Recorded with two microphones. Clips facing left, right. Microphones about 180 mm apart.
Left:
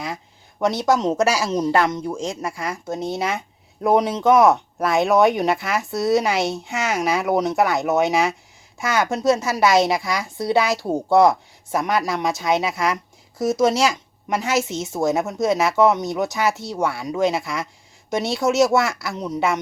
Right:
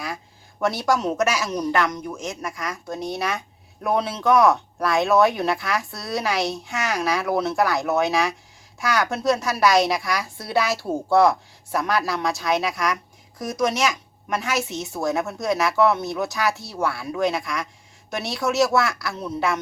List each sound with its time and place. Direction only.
0.6 s speech: 20° left (ahead or behind)